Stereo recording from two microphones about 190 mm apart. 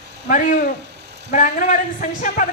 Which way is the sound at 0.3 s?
40° left (ahead or behind).